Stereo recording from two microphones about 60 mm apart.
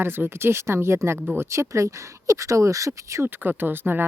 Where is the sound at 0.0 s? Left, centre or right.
Right.